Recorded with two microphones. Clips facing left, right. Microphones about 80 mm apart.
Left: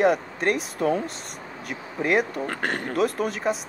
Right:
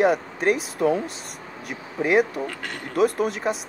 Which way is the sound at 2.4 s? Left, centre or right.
Left.